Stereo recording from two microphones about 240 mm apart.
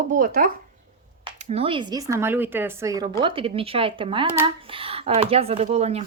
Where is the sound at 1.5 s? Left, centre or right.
Right.